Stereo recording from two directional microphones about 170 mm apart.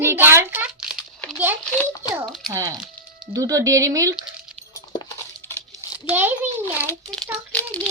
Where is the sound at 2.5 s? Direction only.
15° right (ahead or behind).